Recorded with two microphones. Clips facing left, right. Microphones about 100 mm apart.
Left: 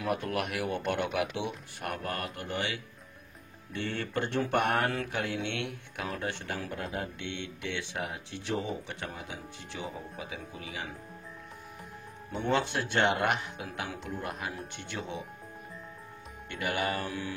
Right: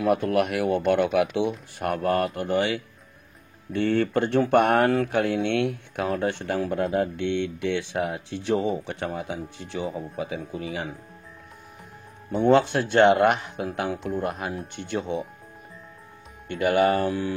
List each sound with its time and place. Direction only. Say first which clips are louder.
0.0 s speech: right 10 dB; 55° right (ahead or behind)
1.8 s speech: right 12 dB; 50° right (ahead or behind)
12.4 s a man's voice: right 10 dB; 40° right (ahead or behind)
16.4 s a man's voice: right 11 dB; 40° right (ahead or behind)